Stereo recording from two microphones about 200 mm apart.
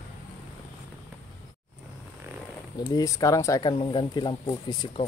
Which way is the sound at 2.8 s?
15° left (ahead or behind).